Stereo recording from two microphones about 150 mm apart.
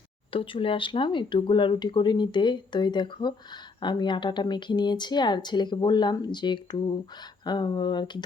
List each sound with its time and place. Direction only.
0.3 s speech: 35° left (ahead or behind)